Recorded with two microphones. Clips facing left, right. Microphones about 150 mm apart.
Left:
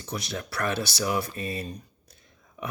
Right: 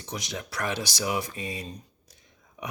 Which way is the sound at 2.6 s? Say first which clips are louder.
Left 2 dB; 15° right (ahead or behind).